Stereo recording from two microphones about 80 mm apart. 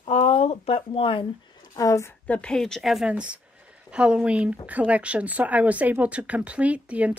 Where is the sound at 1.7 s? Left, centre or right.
Left.